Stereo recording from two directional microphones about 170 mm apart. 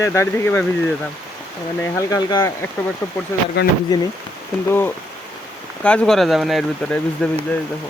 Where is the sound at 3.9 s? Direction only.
20° left (ahead or behind); by 7.3 s centre (ahead or behind).